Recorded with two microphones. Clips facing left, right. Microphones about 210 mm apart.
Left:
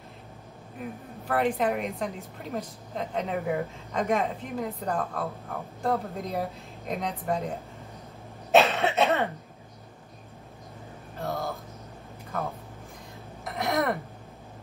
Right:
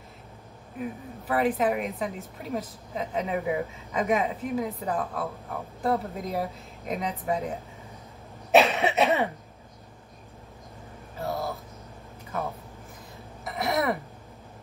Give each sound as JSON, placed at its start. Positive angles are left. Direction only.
{"t": 0.7, "sound": "a woman's voice", "side_deg": 0}
{"t": 8.6, "sound": "cough", "side_deg": -15}
{"t": 11.1, "sound": "a sound", "side_deg": 0}
{"t": 13.4, "sound": "throat clearing", "side_deg": 0}